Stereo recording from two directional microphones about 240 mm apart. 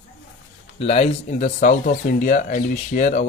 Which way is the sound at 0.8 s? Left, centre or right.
Left.